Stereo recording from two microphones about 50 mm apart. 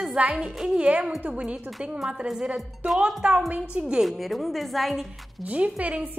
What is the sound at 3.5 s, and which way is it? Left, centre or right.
Speech, right.